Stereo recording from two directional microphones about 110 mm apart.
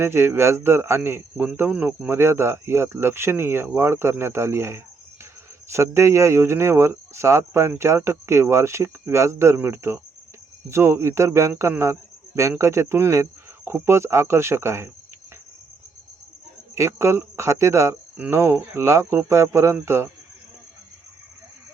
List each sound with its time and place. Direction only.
0.0 s speech: 20° right (ahead or behind)
2.1 s speech: 25° right (ahead or behind)
16.7 s speech: 25° right (ahead or behind)